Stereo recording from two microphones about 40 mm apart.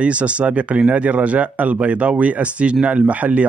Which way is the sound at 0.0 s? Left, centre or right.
Right.